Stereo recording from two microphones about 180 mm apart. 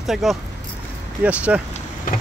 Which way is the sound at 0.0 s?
Centre (ahead or behind).